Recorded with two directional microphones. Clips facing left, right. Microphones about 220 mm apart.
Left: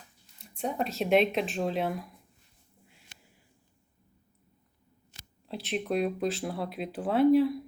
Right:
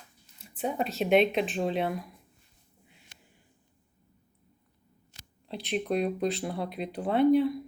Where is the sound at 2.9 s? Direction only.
Centre (ahead or behind).